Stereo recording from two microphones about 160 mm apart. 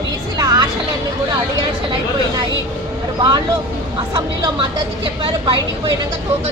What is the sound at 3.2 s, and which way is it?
Speech, 25° right (ahead or behind).